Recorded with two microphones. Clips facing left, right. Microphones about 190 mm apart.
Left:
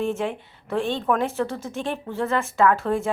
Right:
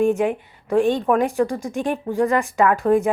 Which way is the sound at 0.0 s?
15° right (ahead or behind).